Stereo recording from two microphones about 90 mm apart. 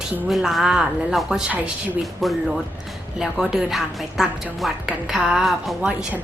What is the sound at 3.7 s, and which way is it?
Speech, centre (ahead or behind).